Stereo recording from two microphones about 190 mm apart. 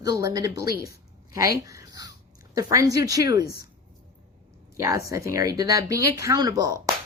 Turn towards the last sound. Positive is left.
turn(degrees=-20)  # may be behind; listen again after turning